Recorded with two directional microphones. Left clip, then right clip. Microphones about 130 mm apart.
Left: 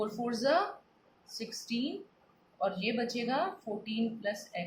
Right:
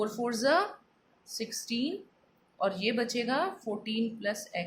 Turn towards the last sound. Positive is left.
turn(degrees=-60)  # may be behind; listen again after turning